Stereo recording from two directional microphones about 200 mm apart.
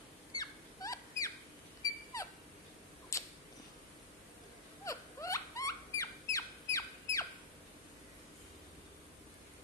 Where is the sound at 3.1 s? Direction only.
15° left (ahead or behind).